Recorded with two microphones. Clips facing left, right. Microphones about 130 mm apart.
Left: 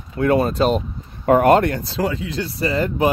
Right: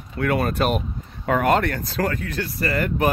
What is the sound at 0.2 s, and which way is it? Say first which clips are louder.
Speech: left 5 dB; 25° left (ahead or behind).